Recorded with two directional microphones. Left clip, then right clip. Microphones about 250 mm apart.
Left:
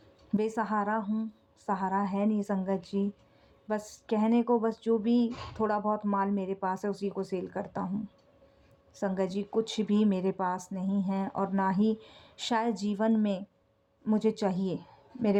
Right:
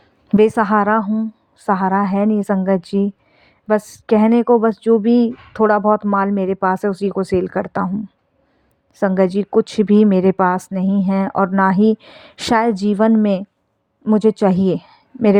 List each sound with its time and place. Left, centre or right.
0.3 s a woman's voice: right
9.0 s a woman's voice: right